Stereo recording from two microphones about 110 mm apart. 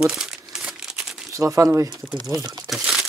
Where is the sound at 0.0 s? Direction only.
5° right (ahead or behind).